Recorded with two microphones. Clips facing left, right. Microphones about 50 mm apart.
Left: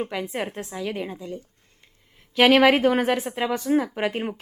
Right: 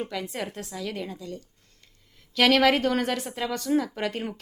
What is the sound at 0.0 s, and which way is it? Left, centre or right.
A woman's voice, left.